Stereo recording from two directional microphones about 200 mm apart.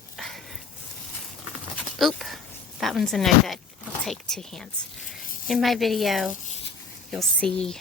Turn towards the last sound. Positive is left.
turn(degrees=5)  # may be behind; listen again after turning